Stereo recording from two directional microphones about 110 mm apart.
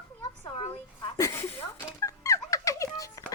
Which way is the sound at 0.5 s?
65° left (ahead or behind).